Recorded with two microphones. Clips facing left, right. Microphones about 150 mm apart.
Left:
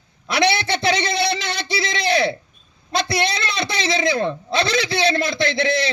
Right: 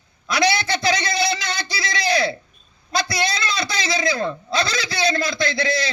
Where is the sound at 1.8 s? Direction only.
25° left (ahead or behind).